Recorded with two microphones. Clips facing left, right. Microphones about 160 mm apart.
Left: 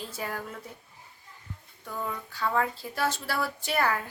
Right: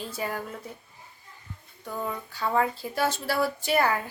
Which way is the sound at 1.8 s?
20° right (ahead or behind).